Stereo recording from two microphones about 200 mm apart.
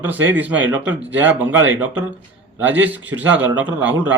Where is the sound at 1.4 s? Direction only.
75° right (ahead or behind).